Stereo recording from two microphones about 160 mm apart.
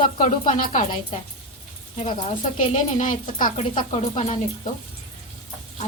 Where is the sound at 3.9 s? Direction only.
40° left (ahead or behind).